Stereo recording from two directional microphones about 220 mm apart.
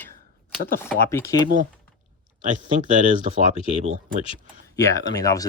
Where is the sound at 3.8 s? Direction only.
35° right (ahead or behind).